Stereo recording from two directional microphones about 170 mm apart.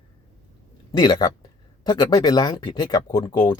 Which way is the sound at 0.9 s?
25° left (ahead or behind).